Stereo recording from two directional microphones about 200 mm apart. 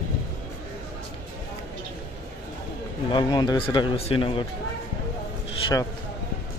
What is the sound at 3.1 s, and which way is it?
Speech, 20° left (ahead or behind).